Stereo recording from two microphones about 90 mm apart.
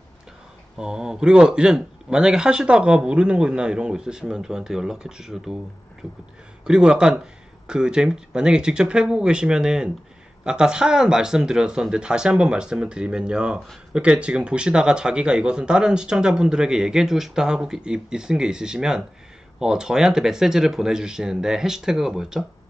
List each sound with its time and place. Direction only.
0.7 s speech: 5° right (ahead or behind)
6.6 s speech: 10° right (ahead or behind)